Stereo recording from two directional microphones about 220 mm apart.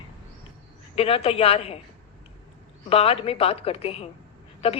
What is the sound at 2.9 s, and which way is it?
A woman's voice, 25° left (ahead or behind).